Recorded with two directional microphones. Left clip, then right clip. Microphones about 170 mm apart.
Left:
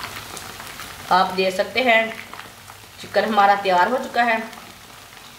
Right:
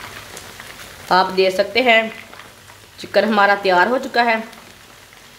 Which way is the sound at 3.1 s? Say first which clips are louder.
Right 2 dB; 60° right (ahead or behind).